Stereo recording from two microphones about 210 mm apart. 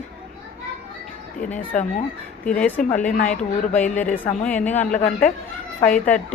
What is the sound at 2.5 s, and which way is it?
Speech, 5° left (ahead or behind).